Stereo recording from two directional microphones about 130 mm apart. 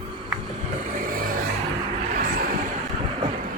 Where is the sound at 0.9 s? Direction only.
90° right.